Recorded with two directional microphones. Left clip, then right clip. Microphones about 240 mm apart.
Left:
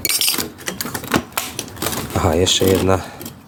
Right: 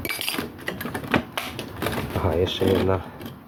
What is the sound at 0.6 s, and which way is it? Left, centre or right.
Typewriter, centre.